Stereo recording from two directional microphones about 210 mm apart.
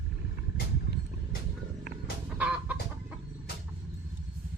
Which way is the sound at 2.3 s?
5° right (ahead or behind).